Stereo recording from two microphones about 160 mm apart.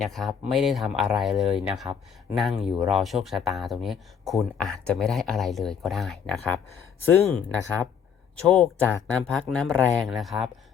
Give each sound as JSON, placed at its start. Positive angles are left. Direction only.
{"t": 0.0, "sound": "speech", "side_deg": 0}
{"t": 7.6, "sound": "speech", "side_deg": -15}
{"t": 8.4, "sound": "speech", "side_deg": 0}